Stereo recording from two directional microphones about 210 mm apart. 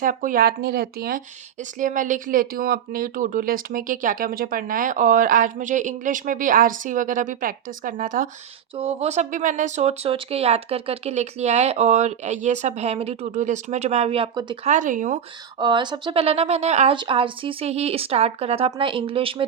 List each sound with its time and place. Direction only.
0.0 s speech: 40° right (ahead or behind)
15.5 s speech: 20° right (ahead or behind)